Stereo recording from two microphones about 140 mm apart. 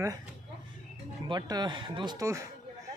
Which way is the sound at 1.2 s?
30° right (ahead or behind).